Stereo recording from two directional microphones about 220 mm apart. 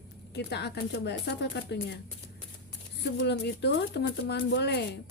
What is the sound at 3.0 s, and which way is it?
A woman's voice, 50° left (ahead or behind).